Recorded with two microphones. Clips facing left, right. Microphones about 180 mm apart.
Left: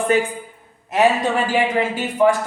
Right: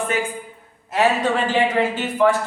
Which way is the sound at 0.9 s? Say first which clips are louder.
Left 2 dB; 15° left (ahead or behind).